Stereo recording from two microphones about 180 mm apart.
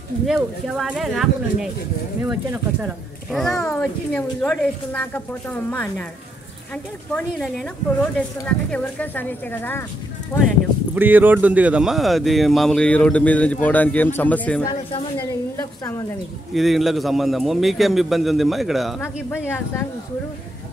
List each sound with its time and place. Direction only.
0.3 s speech: centre (ahead or behind); by 10.5 s 15° left (ahead or behind)
11.0 s speech: 10° right (ahead or behind); by 14.6 s 10° left (ahead or behind)
14.6 s speech: 30° left (ahead or behind)
15.1 s speech: 15° left (ahead or behind)
16.5 s speech: centre (ahead or behind)